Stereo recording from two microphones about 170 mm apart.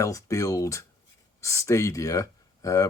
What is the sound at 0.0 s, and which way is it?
Speech, 20° left (ahead or behind).